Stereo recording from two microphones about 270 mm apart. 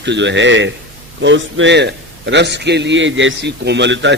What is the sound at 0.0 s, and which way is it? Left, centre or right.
A man's voice, right.